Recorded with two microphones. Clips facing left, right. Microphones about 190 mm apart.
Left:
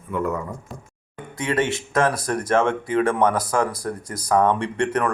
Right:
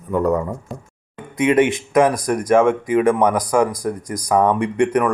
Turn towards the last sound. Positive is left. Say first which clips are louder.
# right 5 dB
turn(degrees=-10)  # may be behind; listen again after turning